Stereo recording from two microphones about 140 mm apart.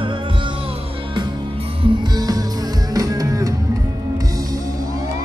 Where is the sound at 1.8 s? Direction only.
30° right (ahead or behind).